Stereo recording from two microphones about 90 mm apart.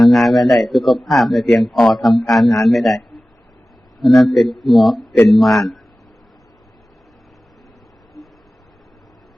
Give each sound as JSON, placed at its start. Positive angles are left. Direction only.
{"t": 0.0, "sound": "a man's voice", "side_deg": 0}
{"t": 4.0, "sound": "a man's voice", "side_deg": 5}